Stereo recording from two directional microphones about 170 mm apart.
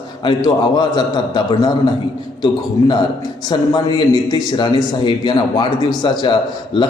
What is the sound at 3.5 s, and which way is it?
A man's voice, 25° left (ahead or behind).